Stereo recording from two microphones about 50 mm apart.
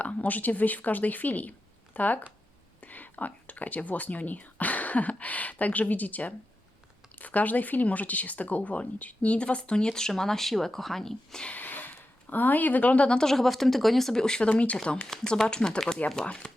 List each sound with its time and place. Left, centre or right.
0.0 s speech: left; by 11.4 s centre
11.5 s a sound: left
13.1 s speech: centre
14.5 s speech: left
15.1 s speech: centre